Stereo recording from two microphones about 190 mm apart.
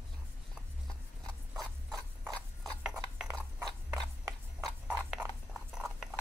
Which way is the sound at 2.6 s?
Centre (ahead or behind).